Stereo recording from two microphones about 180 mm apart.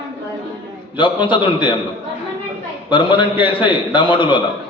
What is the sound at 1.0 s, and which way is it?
Speech, 25° left (ahead or behind).